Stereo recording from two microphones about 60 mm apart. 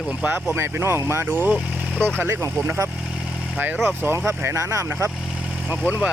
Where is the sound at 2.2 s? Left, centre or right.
Right.